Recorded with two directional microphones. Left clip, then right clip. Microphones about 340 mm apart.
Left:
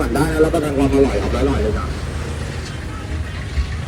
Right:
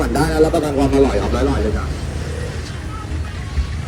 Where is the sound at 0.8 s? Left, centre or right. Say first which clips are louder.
Even; right.